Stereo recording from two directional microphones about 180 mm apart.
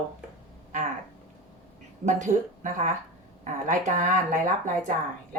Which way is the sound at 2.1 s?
45° right (ahead or behind).